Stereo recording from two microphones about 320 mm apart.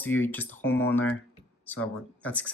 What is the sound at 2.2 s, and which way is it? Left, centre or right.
Speech, centre.